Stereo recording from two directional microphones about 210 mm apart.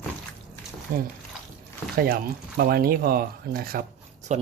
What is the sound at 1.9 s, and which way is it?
Speech, 45° right (ahead or behind).